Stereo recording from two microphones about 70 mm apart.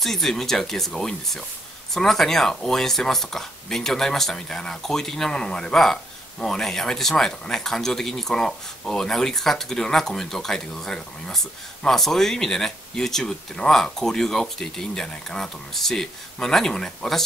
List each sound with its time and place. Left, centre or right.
0.0 s speech: centre